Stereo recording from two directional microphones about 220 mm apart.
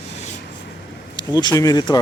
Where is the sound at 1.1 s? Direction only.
20° left (ahead or behind).